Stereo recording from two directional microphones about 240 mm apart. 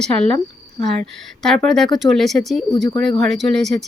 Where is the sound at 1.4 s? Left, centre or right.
Centre.